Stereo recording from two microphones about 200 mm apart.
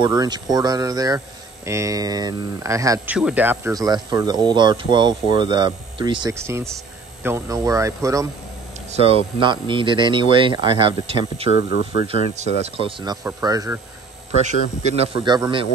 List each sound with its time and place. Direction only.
0.0 s speech: 20° right (ahead or behind)
8.9 s speech: 30° right (ahead or behind)
11.5 s speech: 65° left (ahead or behind)
12.6 s speech: 25° right (ahead or behind)
14.4 s speech: 35° right (ahead or behind)